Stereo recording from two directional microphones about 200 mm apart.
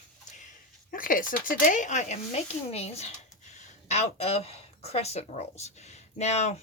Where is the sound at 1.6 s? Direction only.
40° left (ahead or behind).